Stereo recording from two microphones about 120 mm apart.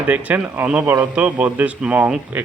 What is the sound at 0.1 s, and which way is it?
A man's voice, 10° right (ahead or behind).